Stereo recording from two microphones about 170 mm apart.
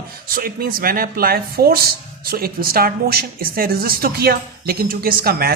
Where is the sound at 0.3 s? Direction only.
60° right (ahead or behind).